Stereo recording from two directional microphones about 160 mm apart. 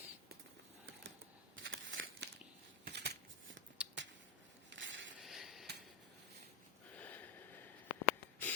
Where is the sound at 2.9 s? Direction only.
90° right.